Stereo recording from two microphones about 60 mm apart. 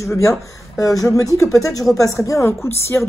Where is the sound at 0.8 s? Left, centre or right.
Left.